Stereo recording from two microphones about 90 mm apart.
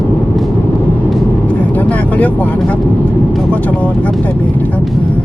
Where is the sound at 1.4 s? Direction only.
15° left (ahead or behind).